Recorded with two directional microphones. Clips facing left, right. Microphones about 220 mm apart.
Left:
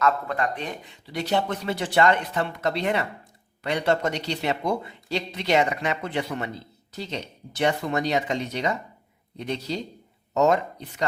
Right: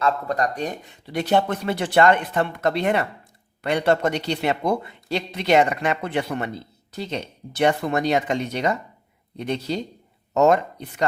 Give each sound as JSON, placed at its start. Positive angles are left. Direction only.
{"t": 0.0, "sound": "a man's voice", "side_deg": -40}